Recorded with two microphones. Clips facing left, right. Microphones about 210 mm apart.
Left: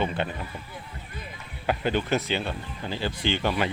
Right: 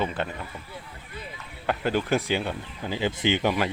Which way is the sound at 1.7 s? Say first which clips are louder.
Even; centre (ahead or behind).